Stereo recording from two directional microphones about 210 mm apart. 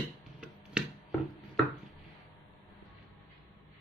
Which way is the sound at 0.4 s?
5° right (ahead or behind).